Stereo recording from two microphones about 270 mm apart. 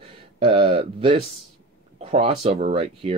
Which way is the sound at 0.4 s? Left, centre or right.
Centre.